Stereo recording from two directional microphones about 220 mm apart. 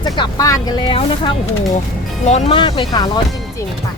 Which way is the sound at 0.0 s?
20° left (ahead or behind).